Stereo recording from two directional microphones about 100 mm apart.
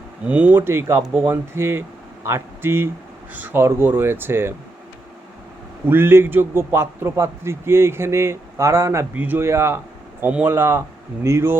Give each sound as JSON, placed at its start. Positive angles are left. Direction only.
{"t": 0.3, "sound": "a man's voice", "side_deg": -15}
{"t": 5.9, "sound": "a man's voice", "side_deg": -20}
{"t": 9.1, "sound": "a man's voice", "side_deg": -20}